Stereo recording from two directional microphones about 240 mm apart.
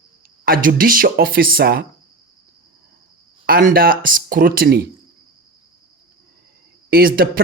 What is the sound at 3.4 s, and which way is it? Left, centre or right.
Speech, right.